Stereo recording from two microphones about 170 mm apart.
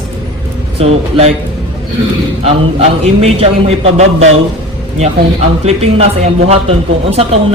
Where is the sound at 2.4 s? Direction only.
35° right (ahead or behind).